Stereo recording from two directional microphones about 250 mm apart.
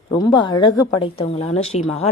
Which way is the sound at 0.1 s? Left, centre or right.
Centre.